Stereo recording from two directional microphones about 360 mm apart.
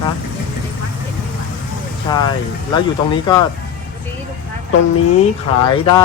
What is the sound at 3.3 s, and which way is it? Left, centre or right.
Speech, centre.